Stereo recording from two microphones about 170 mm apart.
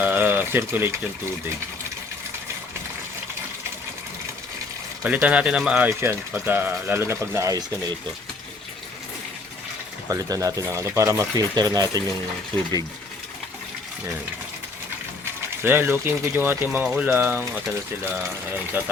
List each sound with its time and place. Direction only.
0.0 s a sound: 10° right (ahead or behind)
5.0 s speech: 5° right (ahead or behind)
10.1 s speech: 20° right (ahead or behind)
15.2 s speech: 15° right (ahead or behind)
18.8 s speech: 10° right (ahead or behind)